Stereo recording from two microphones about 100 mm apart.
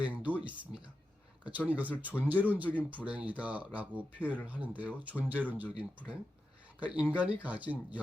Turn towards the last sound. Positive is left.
turn(degrees=-15)  # may be behind; listen again after turning